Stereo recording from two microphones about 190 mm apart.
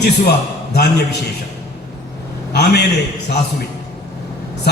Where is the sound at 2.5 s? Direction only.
60° left (ahead or behind).